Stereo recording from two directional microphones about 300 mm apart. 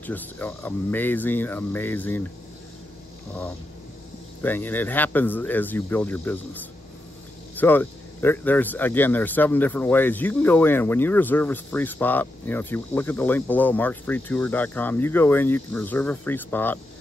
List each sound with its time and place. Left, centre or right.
0.0 s speech: centre
4.4 s speech: centre